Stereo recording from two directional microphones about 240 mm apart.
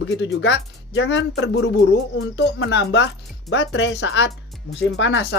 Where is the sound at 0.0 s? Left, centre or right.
Left.